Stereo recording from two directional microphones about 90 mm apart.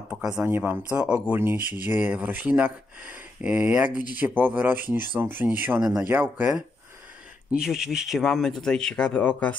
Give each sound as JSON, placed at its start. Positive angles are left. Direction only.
{"t": 0.4, "sound": "speech", "side_deg": -25}